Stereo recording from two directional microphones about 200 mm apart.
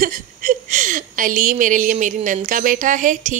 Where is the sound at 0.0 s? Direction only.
45° right (ahead or behind).